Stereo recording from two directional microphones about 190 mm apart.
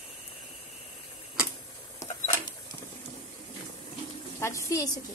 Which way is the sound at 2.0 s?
15° left (ahead or behind).